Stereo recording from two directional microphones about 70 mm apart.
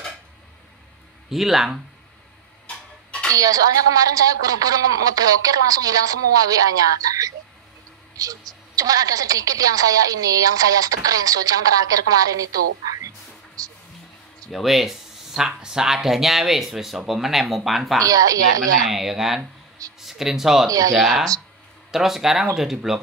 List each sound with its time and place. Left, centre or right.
1.3 s speech: centre
2.6 s tick-tock: centre
3.3 s a woman's voice: right
14.5 s speech: centre
18.0 s a woman's voice: right
18.9 s speech: centre